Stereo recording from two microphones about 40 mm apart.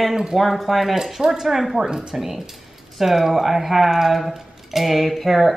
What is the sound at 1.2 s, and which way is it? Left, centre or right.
Speech, centre.